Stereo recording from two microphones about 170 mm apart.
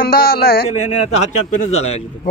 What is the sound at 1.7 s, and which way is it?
Speech, 40° left (ahead or behind).